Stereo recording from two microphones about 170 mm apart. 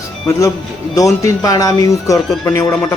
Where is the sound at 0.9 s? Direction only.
20° left (ahead or behind).